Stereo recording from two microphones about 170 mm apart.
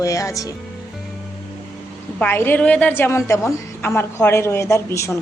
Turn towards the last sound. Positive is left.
turn(degrees=15)  # may be behind; listen again after turning